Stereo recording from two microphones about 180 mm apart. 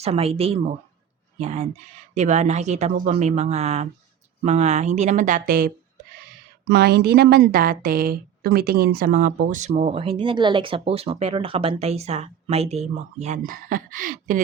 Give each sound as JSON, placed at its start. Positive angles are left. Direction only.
{"t": 0.0, "sound": "speech", "side_deg": -35}
{"t": 6.7, "sound": "a woman's voice", "side_deg": -65}